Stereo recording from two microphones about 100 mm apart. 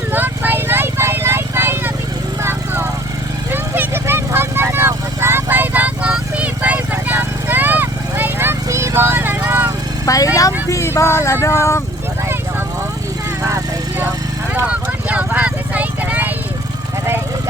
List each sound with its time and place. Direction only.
0.1 s vehicle: 20° right (ahead or behind)
2.4 s a sound: 25° right (ahead or behind)
3.5 s vehicle: 20° right (ahead or behind)
10.3 s vehicle: 35° left (ahead or behind)
14.5 s vehicle: 15° right (ahead or behind)